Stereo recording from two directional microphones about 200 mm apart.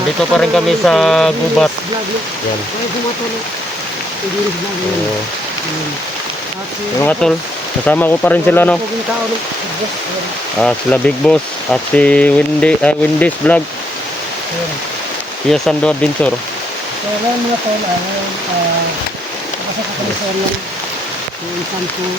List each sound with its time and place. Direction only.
0.3 s speech: centre (ahead or behind)
7.0 s speech: 5° left (ahead or behind)
10.6 s speech: 5° left (ahead or behind)
15.4 s speech: centre (ahead or behind)